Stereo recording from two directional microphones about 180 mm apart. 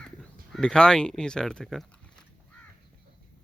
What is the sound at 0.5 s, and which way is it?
Speech, 5° left (ahead or behind).